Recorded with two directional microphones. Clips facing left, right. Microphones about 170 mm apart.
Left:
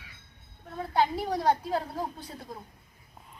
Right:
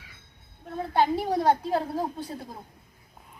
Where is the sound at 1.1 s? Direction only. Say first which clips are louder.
Right 3 dB; 25° right (ahead or behind).